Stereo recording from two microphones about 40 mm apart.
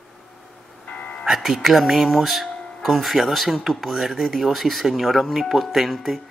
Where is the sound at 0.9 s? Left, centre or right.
Left.